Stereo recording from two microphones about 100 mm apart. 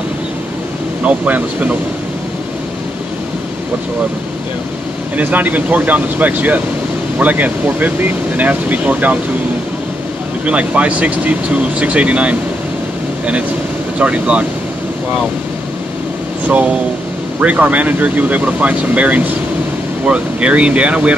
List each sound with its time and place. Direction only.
1.0 s speech: 15° right (ahead or behind)
5.1 s speech: 15° right (ahead or behind)
10.4 s speech: 10° right (ahead or behind)
13.9 s speech: 15° right (ahead or behind)
16.4 s speech: 15° right (ahead or behind)